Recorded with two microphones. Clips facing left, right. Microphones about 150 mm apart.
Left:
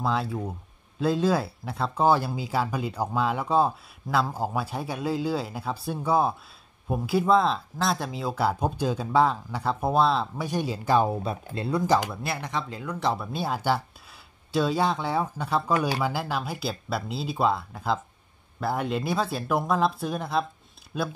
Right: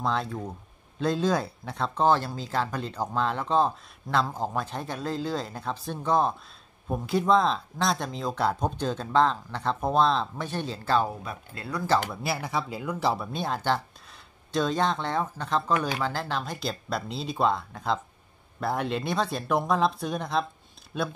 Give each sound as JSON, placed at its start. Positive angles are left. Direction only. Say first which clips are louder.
{"t": 0.0, "sound": "speech", "louder": "left 1 dB", "side_deg": 5}
{"t": 11.1, "sound": "speech", "louder": "left 7 dB", "side_deg": 25}
{"t": 12.1, "sound": "speech", "louder": "right 1 dB", "side_deg": 0}